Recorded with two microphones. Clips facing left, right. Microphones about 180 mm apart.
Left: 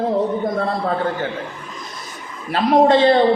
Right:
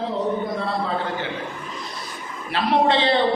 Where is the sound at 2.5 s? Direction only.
45° left (ahead or behind).